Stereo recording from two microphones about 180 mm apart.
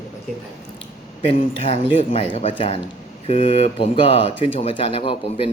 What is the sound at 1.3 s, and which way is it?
Speech, 35° left (ahead or behind).